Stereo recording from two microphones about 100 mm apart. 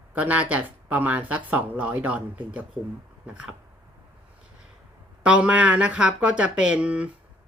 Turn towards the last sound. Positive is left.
turn(degrees=-10)  # may be behind; listen again after turning